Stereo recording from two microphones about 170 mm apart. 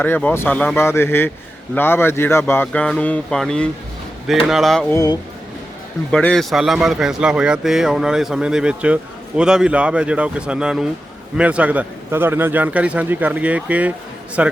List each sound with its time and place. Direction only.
0.0 s speech: 10° left (ahead or behind)
4.9 s speech: 20° left (ahead or behind)
6.1 s a man's voice: 5° left (ahead or behind)